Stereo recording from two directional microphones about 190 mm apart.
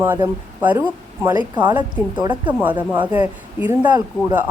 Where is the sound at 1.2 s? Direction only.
25° right (ahead or behind).